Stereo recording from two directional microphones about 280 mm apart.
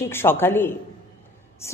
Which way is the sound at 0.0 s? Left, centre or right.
Centre.